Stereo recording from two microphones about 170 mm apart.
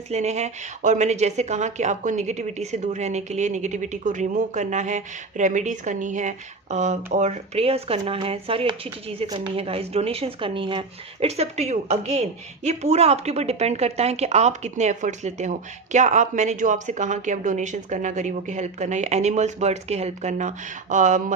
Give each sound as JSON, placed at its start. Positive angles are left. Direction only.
{"t": 0.1, "sound": "speech", "side_deg": -40}